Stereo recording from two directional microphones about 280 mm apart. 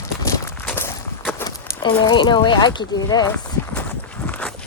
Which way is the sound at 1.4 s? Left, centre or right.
Centre.